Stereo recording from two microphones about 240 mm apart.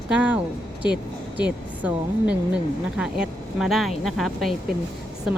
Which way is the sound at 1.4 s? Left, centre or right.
Centre.